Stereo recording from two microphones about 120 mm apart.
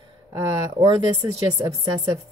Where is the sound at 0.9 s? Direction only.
35° right (ahead or behind).